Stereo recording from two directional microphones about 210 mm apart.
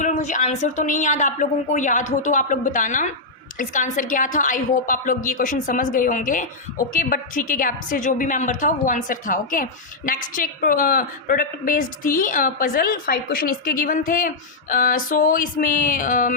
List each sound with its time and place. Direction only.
0.0 s a woman's voice: 35° left (ahead or behind)